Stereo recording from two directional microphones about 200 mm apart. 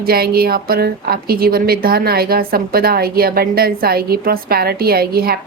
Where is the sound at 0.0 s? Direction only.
50° right (ahead or behind).